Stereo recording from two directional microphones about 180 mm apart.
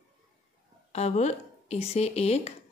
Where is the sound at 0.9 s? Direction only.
40° left (ahead or behind).